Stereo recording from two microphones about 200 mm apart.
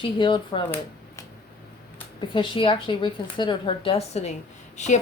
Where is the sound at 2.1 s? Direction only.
25° left (ahead or behind).